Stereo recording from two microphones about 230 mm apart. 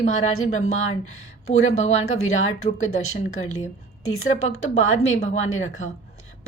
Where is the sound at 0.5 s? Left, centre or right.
Left.